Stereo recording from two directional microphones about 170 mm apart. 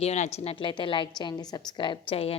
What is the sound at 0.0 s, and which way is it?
A woman's voice, 40° left (ahead or behind).